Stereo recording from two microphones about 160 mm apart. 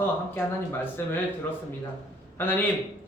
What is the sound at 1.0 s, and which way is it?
Speech, 15° left (ahead or behind).